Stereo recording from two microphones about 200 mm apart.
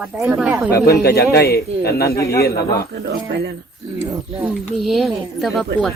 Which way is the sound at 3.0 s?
55° right (ahead or behind).